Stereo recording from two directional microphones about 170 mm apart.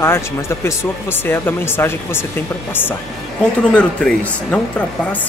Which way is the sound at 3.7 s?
5° left (ahead or behind).